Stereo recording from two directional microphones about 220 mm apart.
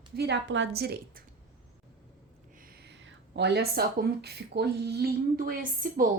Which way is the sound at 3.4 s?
50° right (ahead or behind).